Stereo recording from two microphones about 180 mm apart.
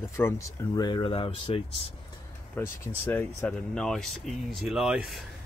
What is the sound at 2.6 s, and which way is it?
Speech, 10° left (ahead or behind).